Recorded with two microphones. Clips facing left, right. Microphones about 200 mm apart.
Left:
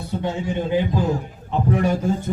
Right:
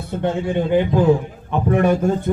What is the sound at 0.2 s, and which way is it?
A man's voice, 55° right (ahead or behind).